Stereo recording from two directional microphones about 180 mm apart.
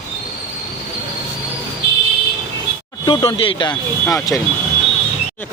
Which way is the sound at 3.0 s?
25° left (ahead or behind).